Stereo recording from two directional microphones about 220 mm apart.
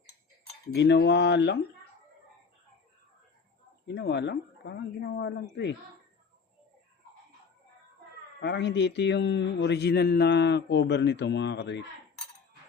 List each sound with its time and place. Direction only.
0.7 s speech: 50° left (ahead or behind)
3.8 s speech: 50° left (ahead or behind)
8.4 s speech: 50° left (ahead or behind)